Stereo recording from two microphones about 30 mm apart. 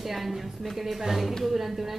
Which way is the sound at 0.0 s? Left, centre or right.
Centre.